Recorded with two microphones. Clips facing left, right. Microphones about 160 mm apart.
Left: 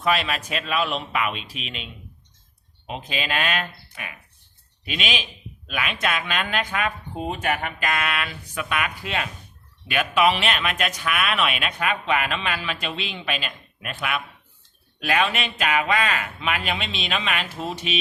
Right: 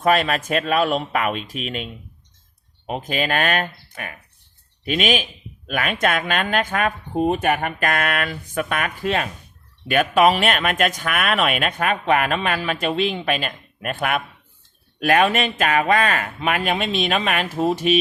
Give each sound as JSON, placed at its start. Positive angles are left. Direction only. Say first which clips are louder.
{"t": 0.0, "sound": "speech", "louder": "right 5 dB", "side_deg": -45}